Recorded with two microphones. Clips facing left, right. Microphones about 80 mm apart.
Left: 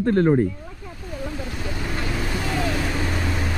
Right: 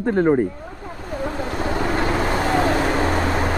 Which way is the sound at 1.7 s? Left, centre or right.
Right.